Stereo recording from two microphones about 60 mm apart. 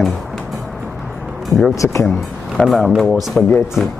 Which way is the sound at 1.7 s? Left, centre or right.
Left.